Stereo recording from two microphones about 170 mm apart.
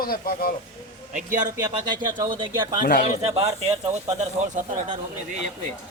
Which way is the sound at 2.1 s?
25° right (ahead or behind).